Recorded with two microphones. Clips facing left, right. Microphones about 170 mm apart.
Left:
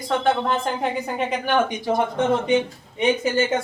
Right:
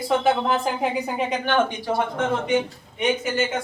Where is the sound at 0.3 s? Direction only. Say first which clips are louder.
Even; 5° right (ahead or behind).